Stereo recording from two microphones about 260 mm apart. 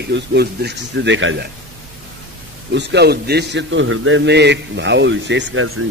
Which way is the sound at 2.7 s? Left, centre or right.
Right.